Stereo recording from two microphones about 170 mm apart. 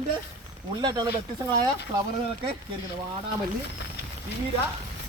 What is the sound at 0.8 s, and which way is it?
Speech, 25° right (ahead or behind).